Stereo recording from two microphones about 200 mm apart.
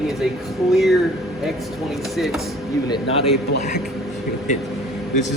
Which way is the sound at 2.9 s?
30° left (ahead or behind).